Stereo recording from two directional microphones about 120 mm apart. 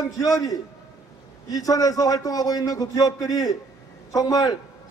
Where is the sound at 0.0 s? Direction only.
30° left (ahead or behind).